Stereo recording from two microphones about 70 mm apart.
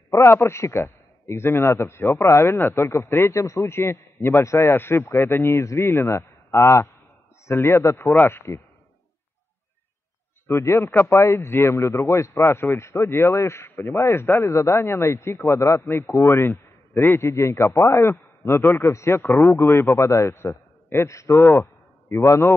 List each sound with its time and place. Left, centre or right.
0.1 s a man's voice: left
10.4 s a man's voice: left